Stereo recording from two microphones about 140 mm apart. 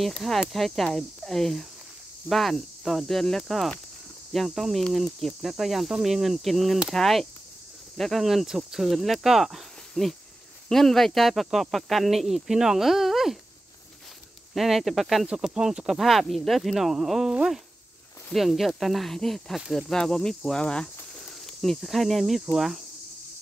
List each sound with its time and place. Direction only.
0.0 s speech: centre (ahead or behind)
14.5 s speech: centre (ahead or behind)